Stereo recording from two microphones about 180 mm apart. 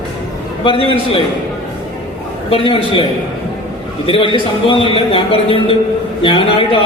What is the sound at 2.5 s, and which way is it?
Speech, 30° left (ahead or behind).